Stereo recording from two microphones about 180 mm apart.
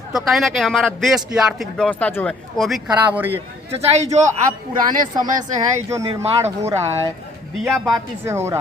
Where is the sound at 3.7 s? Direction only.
40° right (ahead or behind).